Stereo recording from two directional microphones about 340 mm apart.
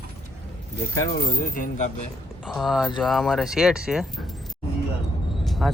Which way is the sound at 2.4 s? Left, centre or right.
Centre.